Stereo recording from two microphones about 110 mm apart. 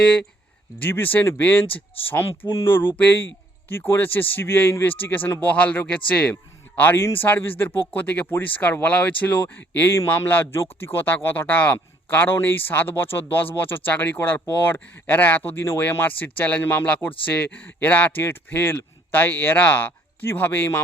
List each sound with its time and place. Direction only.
0.8 s speech: 20° left (ahead or behind)
1.6 s speech: 55° left (ahead or behind)
2.0 s speech: 15° left (ahead or behind)